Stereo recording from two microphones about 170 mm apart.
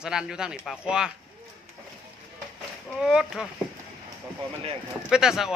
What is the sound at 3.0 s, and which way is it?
Speech, 5° right (ahead or behind).